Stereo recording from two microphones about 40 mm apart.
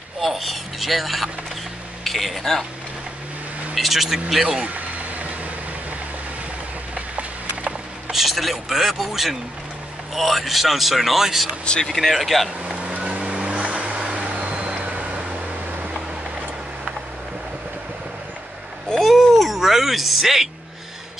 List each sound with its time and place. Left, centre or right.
0.2 s a sound: centre
2.0 s a man's voice: centre
3.7 s a man's voice: centre
4.7 s vehicle: right
8.1 s a man's voice: centre
11.6 s speech: left
11.9 s a man's voice: centre
12.6 s vehicle: right
13.7 s vehicle: right
13.9 s vehicle: right
18.9 s a sound: centre